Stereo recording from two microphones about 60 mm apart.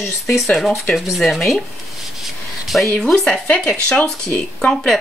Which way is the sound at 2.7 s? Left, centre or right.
Centre.